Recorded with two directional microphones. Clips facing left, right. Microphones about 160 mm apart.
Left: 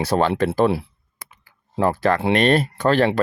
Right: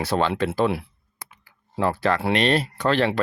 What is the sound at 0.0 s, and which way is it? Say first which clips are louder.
Speech: left 3 dB; 40° left (ahead or behind).